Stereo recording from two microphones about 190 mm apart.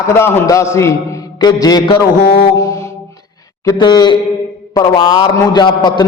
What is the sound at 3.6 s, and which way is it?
A man's voice, 20° left (ahead or behind).